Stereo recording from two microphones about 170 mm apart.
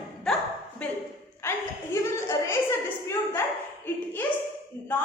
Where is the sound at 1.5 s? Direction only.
15° left (ahead or behind).